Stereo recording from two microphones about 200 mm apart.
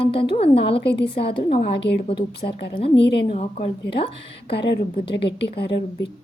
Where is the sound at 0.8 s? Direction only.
55° left (ahead or behind).